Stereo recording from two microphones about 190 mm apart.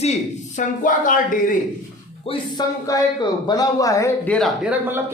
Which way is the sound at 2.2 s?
25° left (ahead or behind).